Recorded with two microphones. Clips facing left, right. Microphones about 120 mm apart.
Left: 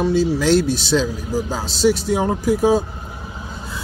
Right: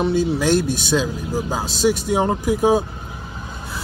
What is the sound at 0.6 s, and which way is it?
Speech, 50° right (ahead or behind).